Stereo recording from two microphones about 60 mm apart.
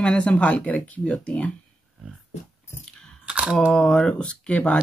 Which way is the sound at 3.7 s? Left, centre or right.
Centre.